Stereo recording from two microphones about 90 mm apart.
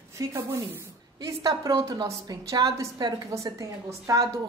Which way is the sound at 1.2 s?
45° right (ahead or behind).